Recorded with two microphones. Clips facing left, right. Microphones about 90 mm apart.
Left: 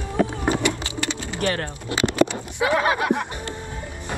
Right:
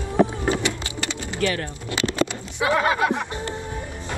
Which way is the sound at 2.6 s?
25° left (ahead or behind).